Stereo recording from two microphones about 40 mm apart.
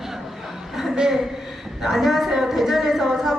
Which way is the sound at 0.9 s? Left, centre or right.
Centre.